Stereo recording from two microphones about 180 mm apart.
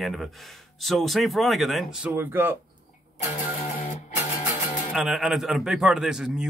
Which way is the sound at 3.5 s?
40° left (ahead or behind).